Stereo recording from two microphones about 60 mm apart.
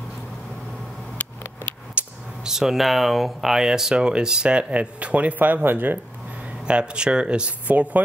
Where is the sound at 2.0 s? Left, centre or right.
Right.